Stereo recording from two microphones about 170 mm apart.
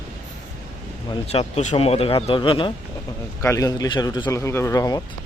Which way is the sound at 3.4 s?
20° left (ahead or behind).